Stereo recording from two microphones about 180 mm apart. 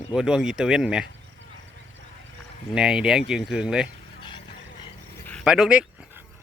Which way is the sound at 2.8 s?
5° right (ahead or behind).